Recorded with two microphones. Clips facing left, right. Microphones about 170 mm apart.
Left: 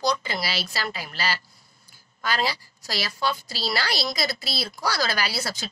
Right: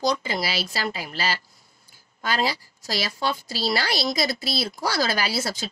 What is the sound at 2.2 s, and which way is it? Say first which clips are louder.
Speech: right 1 dB; 25° right (ahead or behind).